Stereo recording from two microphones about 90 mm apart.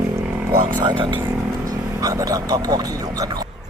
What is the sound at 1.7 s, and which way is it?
Speech, 40° right (ahead or behind).